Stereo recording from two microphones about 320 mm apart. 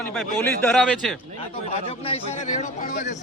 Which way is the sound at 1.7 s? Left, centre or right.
Left.